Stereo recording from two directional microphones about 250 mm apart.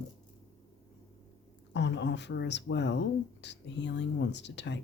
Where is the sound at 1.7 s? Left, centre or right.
Left.